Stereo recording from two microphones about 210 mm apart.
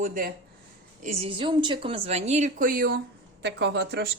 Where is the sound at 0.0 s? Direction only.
40° right (ahead or behind).